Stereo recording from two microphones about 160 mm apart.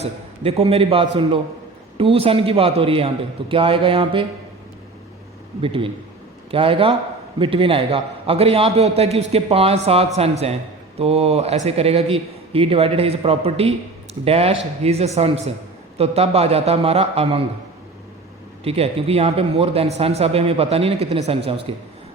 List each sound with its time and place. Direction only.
0.0 s speech: 40° right (ahead or behind)
5.6 s speech: 35° right (ahead or behind)
18.6 s speech: 40° right (ahead or behind)